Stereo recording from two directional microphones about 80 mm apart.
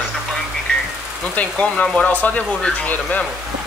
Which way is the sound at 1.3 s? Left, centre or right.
Centre.